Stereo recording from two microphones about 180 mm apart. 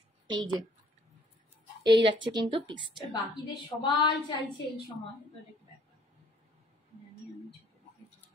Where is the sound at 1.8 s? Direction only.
25° right (ahead or behind).